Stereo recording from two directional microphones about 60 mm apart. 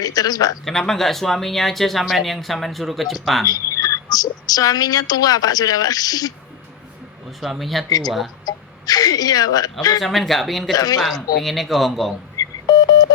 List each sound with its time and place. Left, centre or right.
0.0 s speech: left
0.6 s speech: centre
3.4 s speech: left
7.3 s speech: centre
7.9 s speech: left
10.0 s speech: centre
10.8 s speech: left
11.4 s speech: centre
12.4 s telephone dialing: left